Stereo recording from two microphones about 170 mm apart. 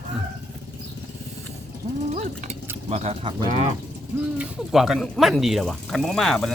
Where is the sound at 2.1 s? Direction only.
45° right (ahead or behind).